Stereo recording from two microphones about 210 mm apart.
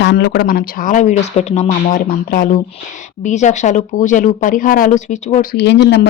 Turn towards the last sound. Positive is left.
turn(degrees=55)  # may be behind; listen again after turning